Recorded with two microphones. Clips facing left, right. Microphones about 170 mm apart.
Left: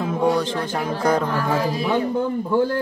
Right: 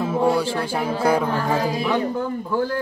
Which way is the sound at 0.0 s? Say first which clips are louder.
Right 1 dB; 5° right (ahead or behind).